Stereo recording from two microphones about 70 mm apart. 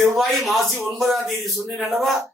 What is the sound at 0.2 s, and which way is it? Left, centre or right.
A man's voice, centre.